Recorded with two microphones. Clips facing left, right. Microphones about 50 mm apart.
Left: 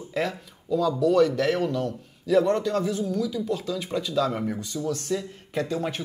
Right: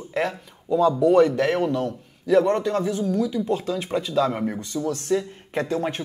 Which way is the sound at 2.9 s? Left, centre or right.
Right.